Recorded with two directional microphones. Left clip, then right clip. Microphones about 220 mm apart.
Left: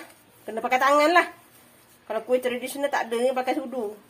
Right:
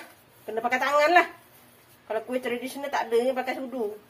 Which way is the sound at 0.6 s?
45° left (ahead or behind).